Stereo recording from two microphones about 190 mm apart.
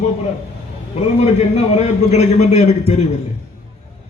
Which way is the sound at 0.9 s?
35° left (ahead or behind).